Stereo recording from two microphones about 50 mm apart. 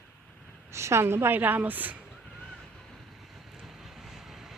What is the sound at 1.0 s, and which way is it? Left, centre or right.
Speech, right.